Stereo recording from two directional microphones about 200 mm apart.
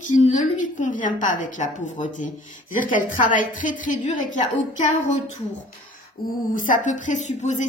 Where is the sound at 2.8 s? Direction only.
40° left (ahead or behind).